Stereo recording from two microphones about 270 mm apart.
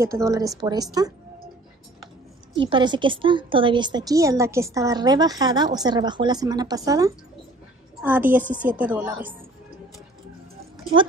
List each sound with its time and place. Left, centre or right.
0.0 s a woman's voice: centre
2.7 s a woman's voice: centre